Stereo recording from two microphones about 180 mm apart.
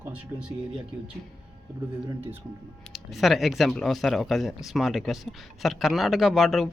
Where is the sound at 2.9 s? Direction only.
Centre (ahead or behind).